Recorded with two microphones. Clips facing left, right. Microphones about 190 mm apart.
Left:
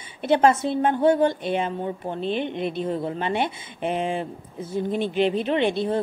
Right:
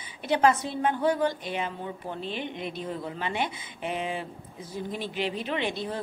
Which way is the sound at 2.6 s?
25° left (ahead or behind).